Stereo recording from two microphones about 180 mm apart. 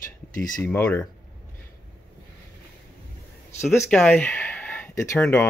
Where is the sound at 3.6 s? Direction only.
15° left (ahead or behind).